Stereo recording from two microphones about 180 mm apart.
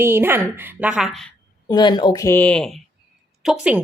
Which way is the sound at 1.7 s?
25° left (ahead or behind).